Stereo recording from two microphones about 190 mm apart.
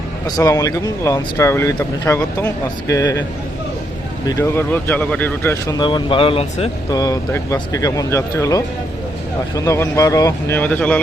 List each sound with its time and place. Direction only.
0.3 s speech: 15° left (ahead or behind)
4.3 s speech: 15° left (ahead or behind); by 7.0 s 30° left (ahead or behind)
7.0 s speech: 15° left (ahead or behind)